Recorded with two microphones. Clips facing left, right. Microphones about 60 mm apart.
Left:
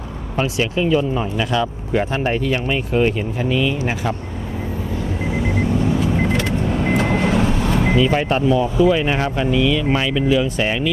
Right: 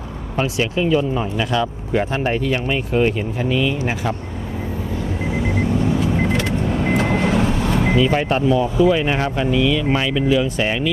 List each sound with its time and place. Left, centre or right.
0.3 s speech: left
5.3 s vehicle: left